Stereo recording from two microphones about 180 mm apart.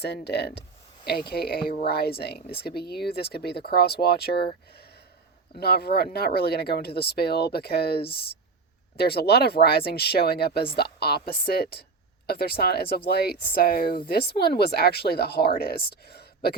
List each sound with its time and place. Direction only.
0.0 s speech: 65° left (ahead or behind)
5.5 s speech: 60° left (ahead or behind)